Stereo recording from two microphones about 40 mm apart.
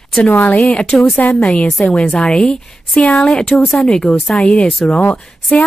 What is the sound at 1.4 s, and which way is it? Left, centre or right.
Speech, left.